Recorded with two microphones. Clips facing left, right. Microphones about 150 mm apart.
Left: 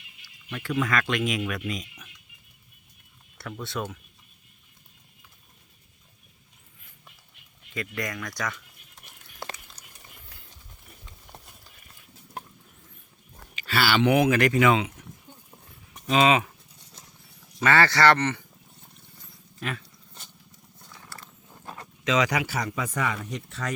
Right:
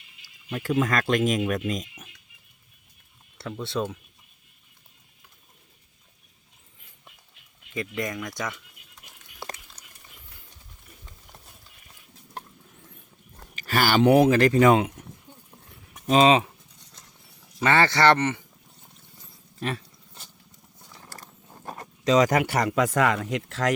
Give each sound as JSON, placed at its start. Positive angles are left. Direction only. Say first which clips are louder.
{"t": 0.8, "sound": "speech", "louder": "right 3 dB", "side_deg": -40}
{"t": 3.6, "sound": "speech", "louder": "right 4 dB", "side_deg": -30}
{"t": 7.7, "sound": "speech", "louder": "right 3 dB", "side_deg": -20}
{"t": 9.8, "sound": "a sound", "louder": "even", "side_deg": -60}
{"t": 13.6, "sound": "speech", "louder": "right 2 dB", "side_deg": -45}
{"t": 16.0, "sound": "speech", "louder": "right 3 dB", "side_deg": -35}
{"t": 17.6, "sound": "speech", "louder": "even", "side_deg": -20}
{"t": 19.5, "sound": "speech", "louder": "right 3 dB", "side_deg": -35}
{"t": 20.7, "sound": "mechanisms", "louder": "even", "side_deg": -15}
{"t": 21.0, "sound": "a sound", "louder": "right 2 dB", "side_deg": -40}
{"t": 22.4, "sound": "speech", "louder": "right 7 dB", "side_deg": -70}